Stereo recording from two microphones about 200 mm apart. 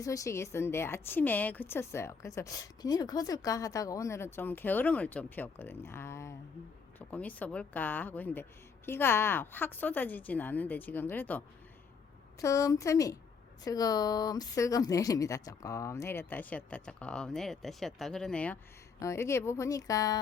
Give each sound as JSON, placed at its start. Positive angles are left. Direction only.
{"t": 0.0, "sound": "speech", "side_deg": 15}